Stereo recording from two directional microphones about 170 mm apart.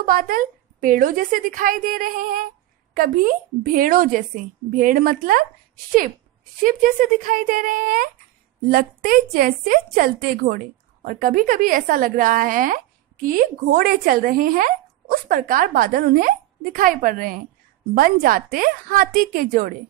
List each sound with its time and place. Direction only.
0.0 s a woman's voice: 55° right (ahead or behind)
6.6 s a woman's voice: 55° right (ahead or behind)